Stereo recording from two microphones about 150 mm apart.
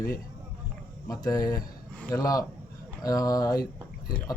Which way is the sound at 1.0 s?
25° left (ahead or behind).